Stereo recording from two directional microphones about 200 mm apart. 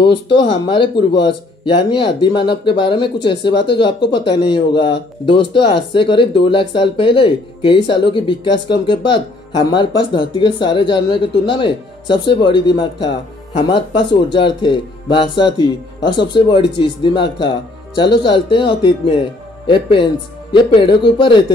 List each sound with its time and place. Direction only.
0.0 s speech: 25° left (ahead or behind)